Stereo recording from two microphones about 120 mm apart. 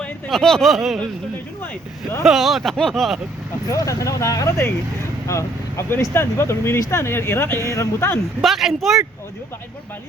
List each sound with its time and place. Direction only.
0.0 s speech: 5° left (ahead or behind)
2.2 s speech: centre (ahead or behind)
3.7 s speech: 25° left (ahead or behind)
8.4 s speech: centre (ahead or behind)